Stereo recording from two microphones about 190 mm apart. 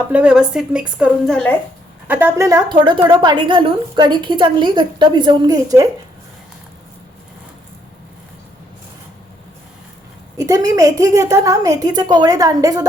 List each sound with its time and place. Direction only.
0.1 s a woman's voice: 5° right (ahead or behind)
2.0 s a woman's voice: 10° right (ahead or behind)
10.3 s a woman's voice: 20° right (ahead or behind)